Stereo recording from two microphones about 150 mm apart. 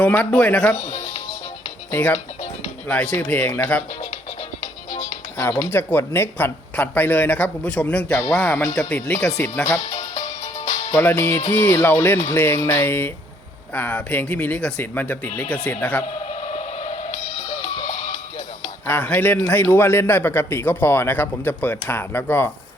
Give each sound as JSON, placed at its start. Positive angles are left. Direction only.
{"t": 0.0, "sound": "a man's voice", "side_deg": 10}
{"t": 0.8, "sound": "speech", "side_deg": 45}
{"t": 1.9, "sound": "speech", "side_deg": 10}
{"t": 2.1, "sound": "speech", "side_deg": 45}
{"t": 2.8, "sound": "a man's voice", "side_deg": 10}
{"t": 5.7, "sound": "a man's voice", "side_deg": 15}
{"t": 9.9, "sound": "music", "side_deg": 50}
{"t": 10.9, "sound": "a man's voice", "side_deg": 15}
{"t": 16.3, "sound": "a sound", "side_deg": 45}
{"t": 18.9, "sound": "a man's voice", "side_deg": 10}